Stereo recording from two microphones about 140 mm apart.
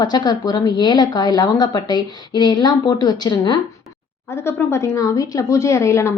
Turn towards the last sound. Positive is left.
turn(degrees=20)  # may be behind; listen again after turning